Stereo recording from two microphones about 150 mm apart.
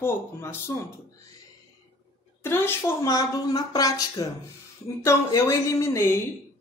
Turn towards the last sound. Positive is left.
turn(degrees=15)  # may be behind; listen again after turning